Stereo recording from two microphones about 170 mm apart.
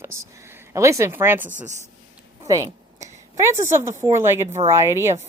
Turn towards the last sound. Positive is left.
turn(degrees=-15)  # may be behind; listen again after turning